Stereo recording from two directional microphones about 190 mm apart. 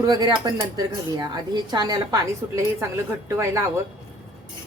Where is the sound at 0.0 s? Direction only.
20° right (ahead or behind).